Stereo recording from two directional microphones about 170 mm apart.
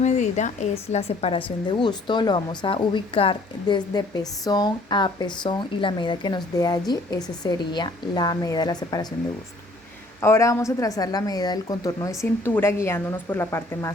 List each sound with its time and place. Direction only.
0.0 s a woman's voice: 45° left (ahead or behind); by 9.0 s 25° left (ahead or behind)
10.2 s a woman's voice: 15° left (ahead or behind)